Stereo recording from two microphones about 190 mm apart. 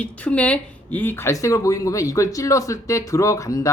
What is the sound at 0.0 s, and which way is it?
A man's voice, 5° left (ahead or behind).